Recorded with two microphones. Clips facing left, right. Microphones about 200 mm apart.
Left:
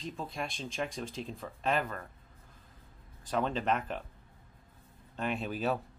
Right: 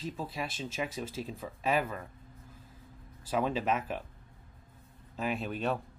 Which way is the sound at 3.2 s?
5° right (ahead or behind).